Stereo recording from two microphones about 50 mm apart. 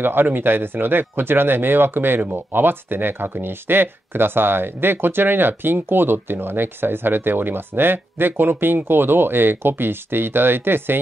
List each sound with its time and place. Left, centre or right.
0.0 s speech: right